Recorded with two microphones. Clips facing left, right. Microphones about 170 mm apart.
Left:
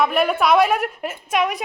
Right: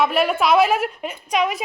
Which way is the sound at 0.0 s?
Centre (ahead or behind).